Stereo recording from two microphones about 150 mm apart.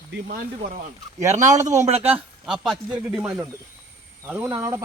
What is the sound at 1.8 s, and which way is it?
Speech, 45° right (ahead or behind).